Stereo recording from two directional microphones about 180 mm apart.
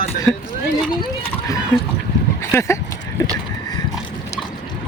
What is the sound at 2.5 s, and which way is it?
Speech, 15° left (ahead or behind).